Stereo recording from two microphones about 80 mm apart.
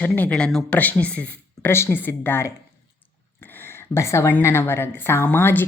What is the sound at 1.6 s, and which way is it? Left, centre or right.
Speech, left.